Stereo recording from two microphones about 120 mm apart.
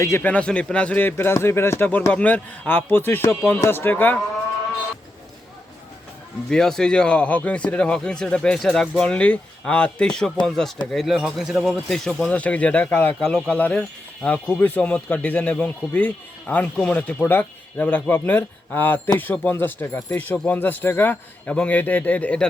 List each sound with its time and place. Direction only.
0.0 s speech: 15° left (ahead or behind)
6.5 s speech: 5° left (ahead or behind)